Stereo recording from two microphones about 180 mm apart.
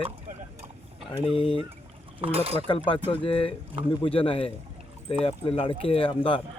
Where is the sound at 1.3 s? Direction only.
30° left (ahead or behind).